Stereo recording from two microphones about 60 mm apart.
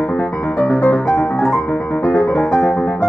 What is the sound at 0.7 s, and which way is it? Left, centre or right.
Music, left.